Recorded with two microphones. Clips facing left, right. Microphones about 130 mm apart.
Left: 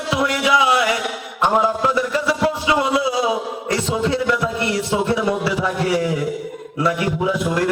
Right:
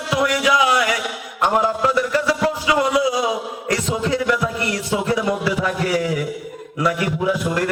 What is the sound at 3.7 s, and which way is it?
A man's voice, 25° left (ahead or behind).